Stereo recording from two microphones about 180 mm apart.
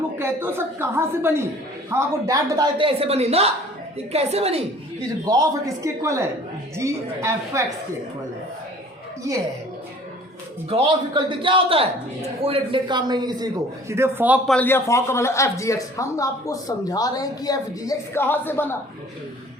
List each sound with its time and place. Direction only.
0.2 s a woman's voice: 15° right (ahead or behind)
2.7 s a man's voice: 30° right (ahead or behind)
5.2 s a woman's voice: 20° right (ahead or behind)
10.7 s a man's voice: 30° right (ahead or behind); by 14.5 s 10° right (ahead or behind)
14.5 s speech: 10° left (ahead or behind)